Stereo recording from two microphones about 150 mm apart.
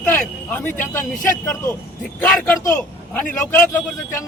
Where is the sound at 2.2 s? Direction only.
10° left (ahead or behind).